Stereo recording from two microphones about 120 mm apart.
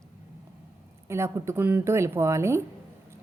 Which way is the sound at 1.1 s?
20° right (ahead or behind).